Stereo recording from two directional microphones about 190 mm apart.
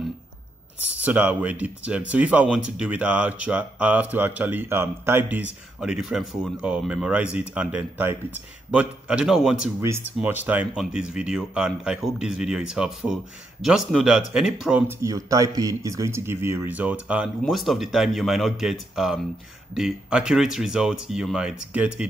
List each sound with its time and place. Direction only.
1.0 s speech: 10° right (ahead or behind)